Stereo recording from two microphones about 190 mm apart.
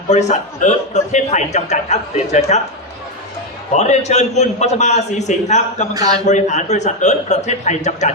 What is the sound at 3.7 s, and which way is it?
A man's voice, 40° left (ahead or behind).